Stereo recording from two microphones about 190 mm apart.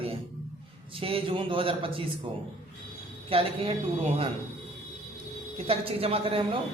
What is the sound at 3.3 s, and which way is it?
Speech, 30° right (ahead or behind).